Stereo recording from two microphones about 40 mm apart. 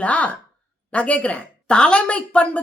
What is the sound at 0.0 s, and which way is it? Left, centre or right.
A woman's voice, left.